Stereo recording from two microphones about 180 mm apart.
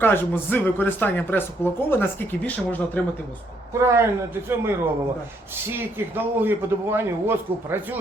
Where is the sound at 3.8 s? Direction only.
15° right (ahead or behind).